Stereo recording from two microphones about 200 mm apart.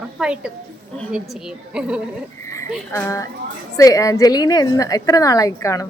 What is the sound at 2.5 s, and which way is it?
A woman's voice, 15° left (ahead or behind).